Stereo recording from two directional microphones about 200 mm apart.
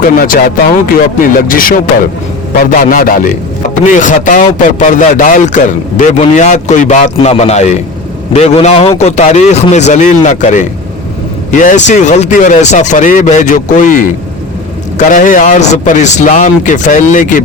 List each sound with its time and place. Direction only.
0.2 s a man's voice: 45° left (ahead or behind)